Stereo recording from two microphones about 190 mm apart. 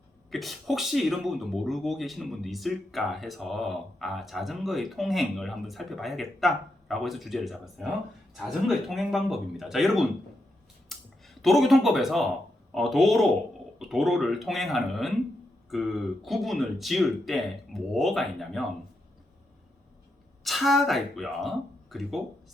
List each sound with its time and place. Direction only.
0.3 s speech: centre (ahead or behind)
10.9 s a sound: centre (ahead or behind)
11.4 s speech: centre (ahead or behind)
20.4 s speech: centre (ahead or behind)